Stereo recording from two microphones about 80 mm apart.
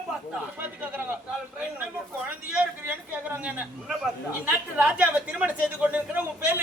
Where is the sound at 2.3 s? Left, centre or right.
Centre.